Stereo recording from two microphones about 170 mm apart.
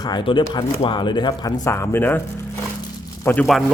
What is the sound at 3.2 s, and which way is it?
Speech, 15° left (ahead or behind).